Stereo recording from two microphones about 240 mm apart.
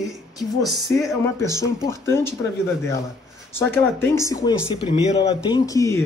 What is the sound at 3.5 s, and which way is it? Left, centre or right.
Speech, centre.